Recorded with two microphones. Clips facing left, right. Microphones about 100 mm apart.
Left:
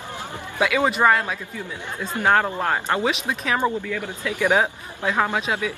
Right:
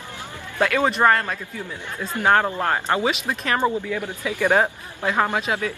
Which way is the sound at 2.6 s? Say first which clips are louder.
Right 1 dB; 5° left (ahead or behind).